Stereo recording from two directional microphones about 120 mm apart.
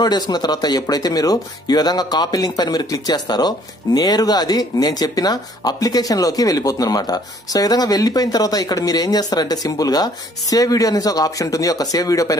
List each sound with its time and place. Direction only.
0.0 s speech: 35° left (ahead or behind)